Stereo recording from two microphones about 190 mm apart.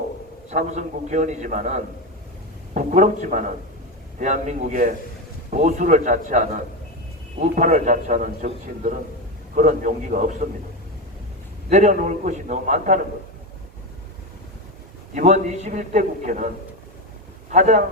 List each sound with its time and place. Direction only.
0.5 s a man's voice: 40° right (ahead or behind)
11.7 s a man's voice: 40° right (ahead or behind)
15.1 s a man's voice: 35° right (ahead or behind)
17.5 s a man's voice: 40° right (ahead or behind)